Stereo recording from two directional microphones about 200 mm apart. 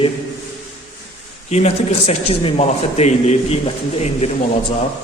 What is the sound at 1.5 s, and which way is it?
Speech, 30° left (ahead or behind).